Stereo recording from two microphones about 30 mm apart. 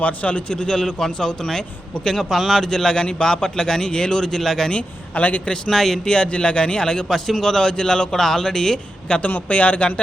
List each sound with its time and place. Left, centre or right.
0.0 s a man's voice: left
0.5 s a man's voice: left
0.9 s a man's voice: centre
2.6 s a man's voice: centre
5.1 s a man's voice: left
5.7 s a man's voice: centre
6.1 s speech: left
7.1 s a man's voice: centre
7.7 s a man's voice: left
8.1 s a man's voice: centre
9.1 s speech: left
9.5 s a man's voice: left